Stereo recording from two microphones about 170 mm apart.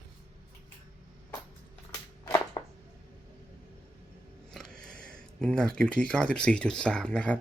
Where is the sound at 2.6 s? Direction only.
25° left (ahead or behind).